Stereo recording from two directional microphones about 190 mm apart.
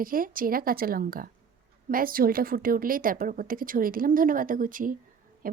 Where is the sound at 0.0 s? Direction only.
50° right (ahead or behind).